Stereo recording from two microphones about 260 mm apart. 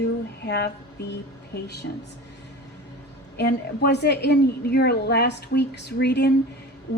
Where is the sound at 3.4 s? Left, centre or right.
Left.